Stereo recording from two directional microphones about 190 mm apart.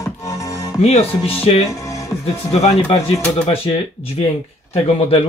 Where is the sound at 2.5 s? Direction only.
35° left (ahead or behind).